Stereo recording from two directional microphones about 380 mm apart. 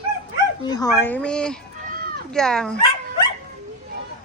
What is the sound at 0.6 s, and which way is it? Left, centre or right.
Speech, centre.